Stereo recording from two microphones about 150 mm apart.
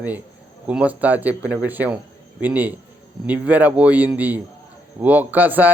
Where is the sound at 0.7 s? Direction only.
10° right (ahead or behind).